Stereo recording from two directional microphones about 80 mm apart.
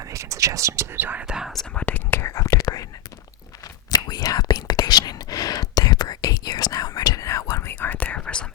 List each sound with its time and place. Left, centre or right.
0.0 s whispering: right
0.9 s speech: right
1.2 s speech: centre
1.8 s whispering: left
3.9 s whispering: left
7.7 s whispering: left